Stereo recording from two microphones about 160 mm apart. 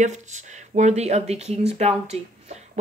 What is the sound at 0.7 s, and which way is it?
Speech, 45° right (ahead or behind).